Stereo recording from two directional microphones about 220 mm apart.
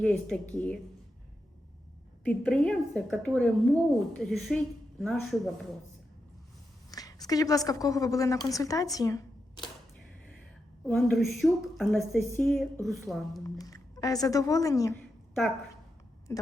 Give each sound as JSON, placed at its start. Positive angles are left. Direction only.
{"t": 0.0, "sound": "a woman's voice", "side_deg": 5}
{"t": 2.2, "sound": "a woman's voice", "side_deg": 5}
{"t": 6.9, "sound": "a woman's voice", "side_deg": 15}
{"t": 10.8, "sound": "a woman's voice", "side_deg": 0}
{"t": 13.4, "sound": "speech", "side_deg": 15}
{"t": 16.3, "sound": "speech", "side_deg": 10}